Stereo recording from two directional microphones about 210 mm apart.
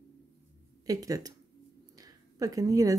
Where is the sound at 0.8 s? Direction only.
15° right (ahead or behind).